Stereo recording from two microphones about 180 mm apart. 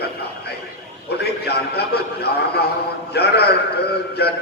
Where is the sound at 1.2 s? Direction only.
60° left (ahead or behind).